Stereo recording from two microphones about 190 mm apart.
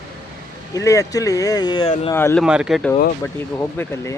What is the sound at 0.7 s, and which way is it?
Speech, 15° left (ahead or behind).